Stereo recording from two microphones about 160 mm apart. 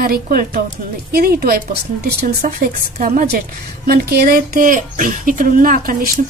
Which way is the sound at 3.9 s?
70° right (ahead or behind).